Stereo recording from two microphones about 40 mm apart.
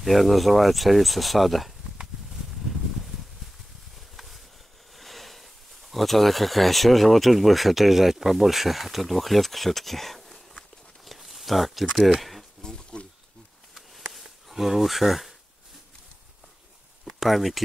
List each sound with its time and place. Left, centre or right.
0.0 s speech: centre
4.9 s speech: centre
11.1 s a sound: centre
12.1 s speech: centre
12.6 s insect: left
13.7 s a sound: centre
14.5 s speech: centre
17.0 s speech: centre